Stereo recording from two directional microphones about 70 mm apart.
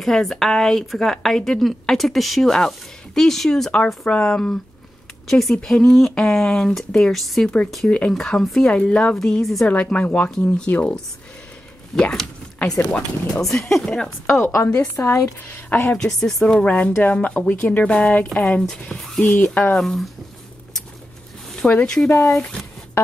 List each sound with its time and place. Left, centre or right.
0.0 s a woman's voice: centre
8.7 s a woman's voice: centre
9.7 s speech: centre
13.6 s a woman's voice: centre
14.4 s a woman's voice: left
16.0 s speech: centre
16.6 s speech: left
19.4 s speech: centre
19.8 s a woman's voice: centre
21.6 s speech: centre